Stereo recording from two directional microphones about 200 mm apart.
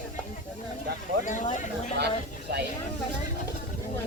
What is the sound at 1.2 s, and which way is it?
Speech, 40° left (ahead or behind).